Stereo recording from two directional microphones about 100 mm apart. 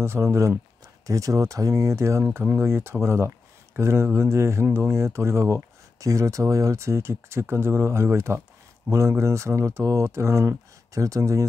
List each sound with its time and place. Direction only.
0.0 s speech: 25° right (ahead or behind)